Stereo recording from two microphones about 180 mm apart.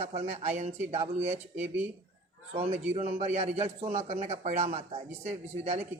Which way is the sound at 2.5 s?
35° right (ahead or behind).